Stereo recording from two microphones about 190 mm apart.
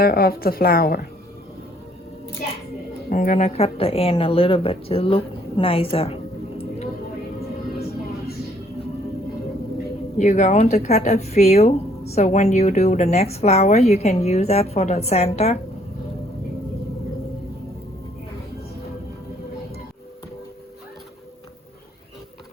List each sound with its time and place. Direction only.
0.0 s a woman's voice: 50° left (ahead or behind)
3.1 s speech: 45° left (ahead or behind)
10.2 s speech: 40° left (ahead or behind)